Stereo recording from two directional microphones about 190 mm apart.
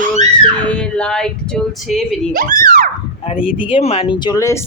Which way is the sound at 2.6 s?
50° right (ahead or behind).